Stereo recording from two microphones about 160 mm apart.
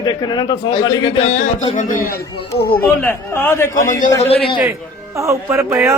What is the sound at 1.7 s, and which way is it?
Speech, 55° left (ahead or behind).